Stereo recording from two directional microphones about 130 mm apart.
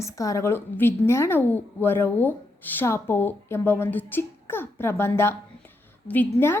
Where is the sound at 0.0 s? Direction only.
25° left (ahead or behind).